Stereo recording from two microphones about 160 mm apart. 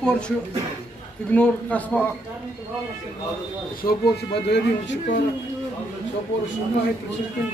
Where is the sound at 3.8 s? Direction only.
90° left.